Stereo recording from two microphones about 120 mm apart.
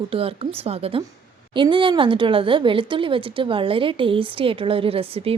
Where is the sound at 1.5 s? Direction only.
45° right (ahead or behind).